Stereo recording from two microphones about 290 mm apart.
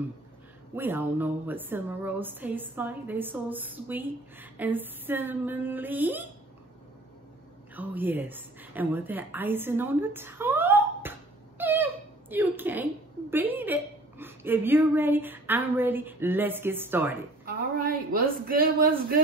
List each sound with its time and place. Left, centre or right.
0.7 s speech: centre
7.7 s a woman's voice: centre
17.5 s a man's voice: right